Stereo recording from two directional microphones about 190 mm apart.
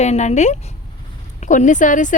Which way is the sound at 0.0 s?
35° left (ahead or behind).